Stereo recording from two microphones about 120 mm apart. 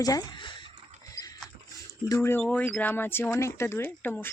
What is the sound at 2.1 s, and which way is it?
Speech, 20° left (ahead or behind).